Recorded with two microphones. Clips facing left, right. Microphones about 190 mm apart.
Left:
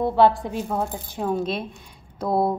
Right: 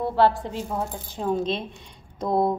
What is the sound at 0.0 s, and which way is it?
A woman's voice, 15° left (ahead or behind).